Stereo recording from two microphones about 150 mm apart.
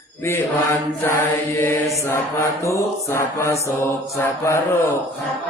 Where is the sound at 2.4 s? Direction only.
20° left (ahead or behind).